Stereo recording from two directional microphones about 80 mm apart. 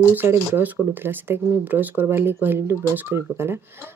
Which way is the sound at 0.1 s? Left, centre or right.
Right.